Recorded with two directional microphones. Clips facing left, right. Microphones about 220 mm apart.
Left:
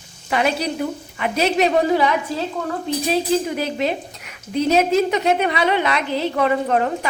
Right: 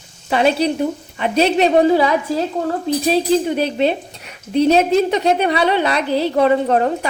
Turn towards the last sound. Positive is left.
turn(degrees=-30)  # may be behind; listen again after turning